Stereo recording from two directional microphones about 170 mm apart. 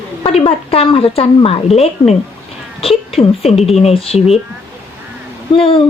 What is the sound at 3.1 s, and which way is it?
Speech, 35° left (ahead or behind).